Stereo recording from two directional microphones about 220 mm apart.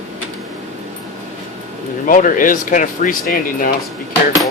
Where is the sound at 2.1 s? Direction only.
40° left (ahead or behind).